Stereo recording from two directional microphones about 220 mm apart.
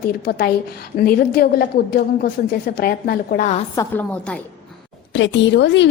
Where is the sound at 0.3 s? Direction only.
45° left (ahead or behind).